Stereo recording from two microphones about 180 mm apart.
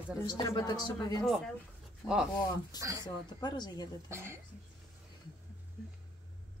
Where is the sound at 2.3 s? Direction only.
25° left (ahead or behind).